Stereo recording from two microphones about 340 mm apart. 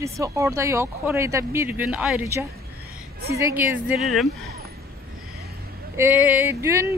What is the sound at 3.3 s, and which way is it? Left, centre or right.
Speech, centre.